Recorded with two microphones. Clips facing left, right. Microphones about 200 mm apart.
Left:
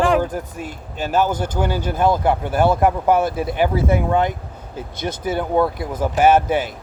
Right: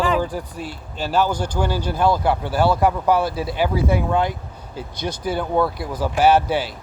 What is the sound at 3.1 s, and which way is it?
A man's voice, 50° left (ahead or behind).